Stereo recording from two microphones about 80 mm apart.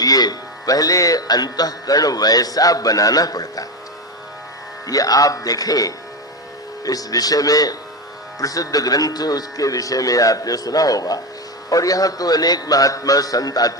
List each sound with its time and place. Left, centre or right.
0.0 s speech: left
4.9 s speech: left